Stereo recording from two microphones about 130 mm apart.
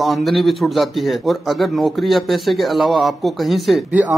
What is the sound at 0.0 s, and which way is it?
Speech, centre (ahead or behind).